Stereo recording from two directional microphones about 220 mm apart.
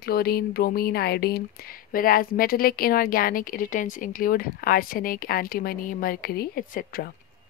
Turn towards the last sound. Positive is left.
turn(degrees=40)  # may be behind; listen again after turning